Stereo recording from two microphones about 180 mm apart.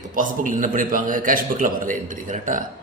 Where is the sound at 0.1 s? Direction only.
50° right (ahead or behind).